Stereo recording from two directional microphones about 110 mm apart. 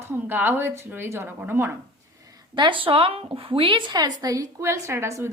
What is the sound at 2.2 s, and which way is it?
A woman's voice, 40° right (ahead or behind).